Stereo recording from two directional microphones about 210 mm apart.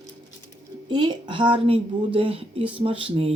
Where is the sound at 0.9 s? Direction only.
20° right (ahead or behind).